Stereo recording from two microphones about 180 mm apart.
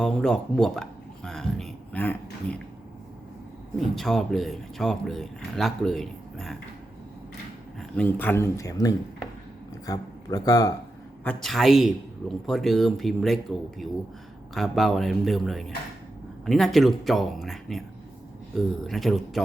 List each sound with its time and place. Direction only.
0.0 s speech: 5° left (ahead or behind)
3.8 s speech: centre (ahead or behind)
7.8 s speech: 5° left (ahead or behind)
11.2 s speech: 5° left (ahead or behind)